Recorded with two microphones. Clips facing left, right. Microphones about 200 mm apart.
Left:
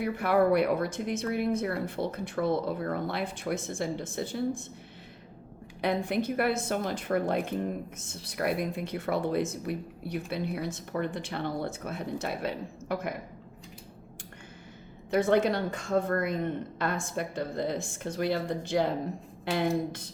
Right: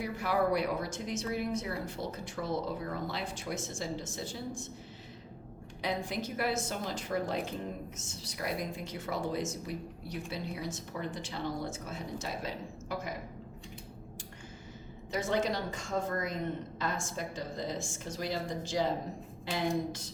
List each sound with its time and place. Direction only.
0.0 s a woman's voice: 60° left (ahead or behind)
5.8 s a woman's voice: 60° left (ahead or behind)
15.1 s a woman's voice: 60° left (ahead or behind)